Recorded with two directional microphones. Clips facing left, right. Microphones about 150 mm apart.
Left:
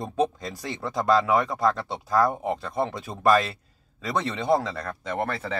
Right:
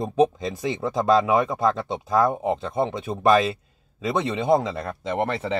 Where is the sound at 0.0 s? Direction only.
20° right (ahead or behind).